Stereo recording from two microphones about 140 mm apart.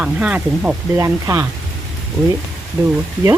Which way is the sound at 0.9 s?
20° right (ahead or behind).